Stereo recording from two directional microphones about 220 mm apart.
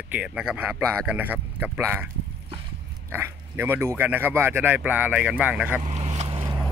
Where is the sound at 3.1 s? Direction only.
10° right (ahead or behind).